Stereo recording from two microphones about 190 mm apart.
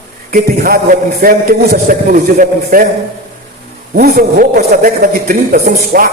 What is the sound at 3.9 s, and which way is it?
A man's voice, 50° right (ahead or behind).